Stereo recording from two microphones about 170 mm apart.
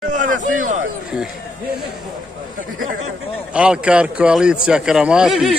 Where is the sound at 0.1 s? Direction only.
50° right (ahead or behind).